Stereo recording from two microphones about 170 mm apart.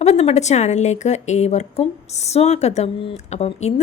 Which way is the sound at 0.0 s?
40° left (ahead or behind).